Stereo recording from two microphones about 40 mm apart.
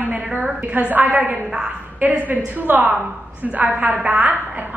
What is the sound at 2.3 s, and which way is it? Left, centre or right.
A woman's voice, right.